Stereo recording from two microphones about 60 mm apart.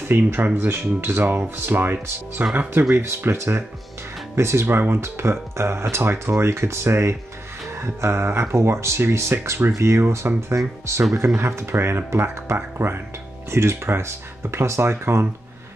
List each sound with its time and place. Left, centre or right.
0.1 s speech: right